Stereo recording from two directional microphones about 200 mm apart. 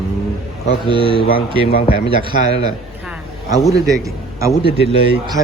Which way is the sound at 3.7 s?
15° right (ahead or behind).